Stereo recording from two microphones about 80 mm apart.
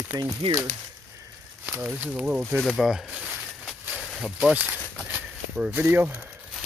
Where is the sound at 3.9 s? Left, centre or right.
Centre.